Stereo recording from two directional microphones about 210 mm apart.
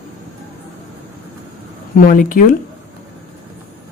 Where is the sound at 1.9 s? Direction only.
40° left (ahead or behind).